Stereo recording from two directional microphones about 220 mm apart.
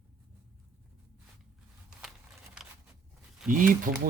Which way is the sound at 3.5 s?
40° right (ahead or behind).